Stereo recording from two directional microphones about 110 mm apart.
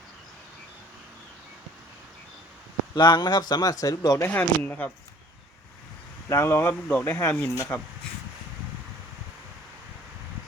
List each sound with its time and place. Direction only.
2.9 s speech: 40° left (ahead or behind)
4.4 s speech: 15° left (ahead or behind)
6.2 s speech: 25° left (ahead or behind)